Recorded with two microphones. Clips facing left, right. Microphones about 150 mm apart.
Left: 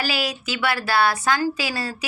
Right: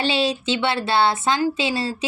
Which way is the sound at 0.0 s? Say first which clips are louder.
Right 5 dB; 25° right (ahead or behind).